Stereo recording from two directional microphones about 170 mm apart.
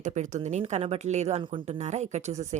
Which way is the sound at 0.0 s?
45° right (ahead or behind).